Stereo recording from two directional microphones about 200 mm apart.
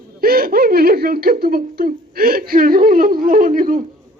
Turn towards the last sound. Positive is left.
turn(degrees=-45)  # may be behind; listen again after turning